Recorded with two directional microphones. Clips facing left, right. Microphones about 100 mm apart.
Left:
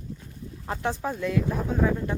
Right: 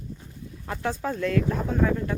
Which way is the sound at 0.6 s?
25° left (ahead or behind).